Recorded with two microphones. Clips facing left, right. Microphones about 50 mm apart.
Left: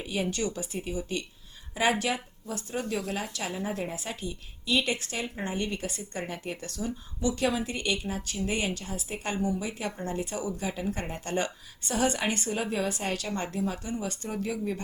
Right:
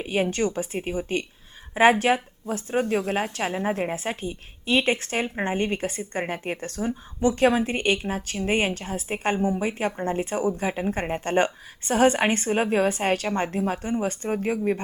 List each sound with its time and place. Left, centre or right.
0.0 s a woman's voice: right